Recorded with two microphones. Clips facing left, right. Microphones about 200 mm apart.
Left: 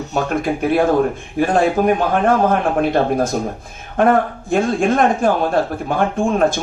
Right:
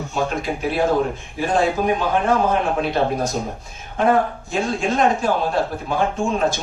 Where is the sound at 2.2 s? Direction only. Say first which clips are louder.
Left 4 dB; 55° left (ahead or behind).